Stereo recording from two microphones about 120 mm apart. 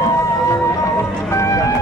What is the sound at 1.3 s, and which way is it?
Vehicle, 25° left (ahead or behind).